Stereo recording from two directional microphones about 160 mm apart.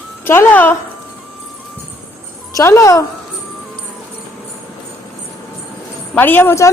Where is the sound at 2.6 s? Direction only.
20° left (ahead or behind).